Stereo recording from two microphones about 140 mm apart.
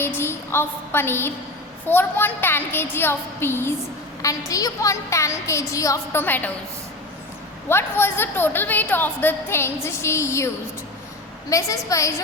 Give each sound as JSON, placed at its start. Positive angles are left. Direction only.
{"t": 0.0, "sound": "a woman's voice", "side_deg": 15}
{"t": 7.7, "sound": "a woman's voice", "side_deg": 15}